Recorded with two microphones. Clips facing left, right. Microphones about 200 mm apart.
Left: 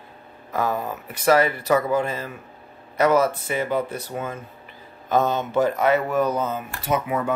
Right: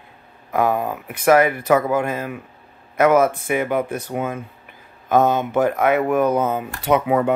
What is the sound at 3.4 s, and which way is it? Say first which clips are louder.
Speech: right 3 dB; 15° right (ahead or behind).